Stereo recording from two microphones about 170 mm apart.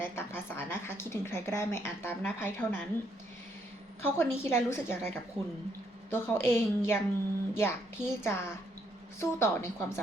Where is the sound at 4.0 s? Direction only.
15° left (ahead or behind).